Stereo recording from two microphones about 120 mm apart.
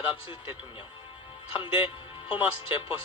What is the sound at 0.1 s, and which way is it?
Speech, 45° left (ahead or behind).